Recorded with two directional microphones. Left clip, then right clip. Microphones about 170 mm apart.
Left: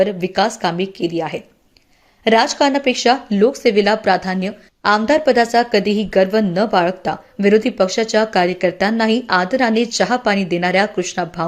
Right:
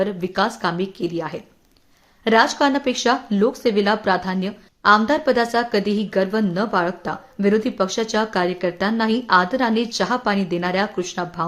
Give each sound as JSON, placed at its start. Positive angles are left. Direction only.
{"t": 0.0, "sound": "speech", "side_deg": 10}